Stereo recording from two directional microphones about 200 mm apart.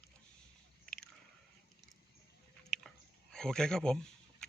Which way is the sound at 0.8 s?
5° left (ahead or behind).